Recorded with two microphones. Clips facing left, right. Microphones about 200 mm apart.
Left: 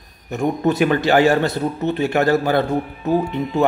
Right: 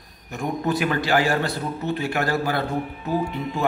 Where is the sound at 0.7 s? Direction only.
25° left (ahead or behind).